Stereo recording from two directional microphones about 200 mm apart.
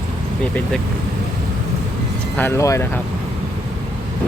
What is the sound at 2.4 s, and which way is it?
Speech, 15° left (ahead or behind).